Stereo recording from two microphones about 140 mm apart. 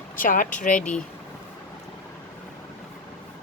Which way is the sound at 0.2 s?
70° left (ahead or behind).